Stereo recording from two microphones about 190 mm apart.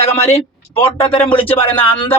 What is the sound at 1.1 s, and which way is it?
Speech, 10° left (ahead or behind).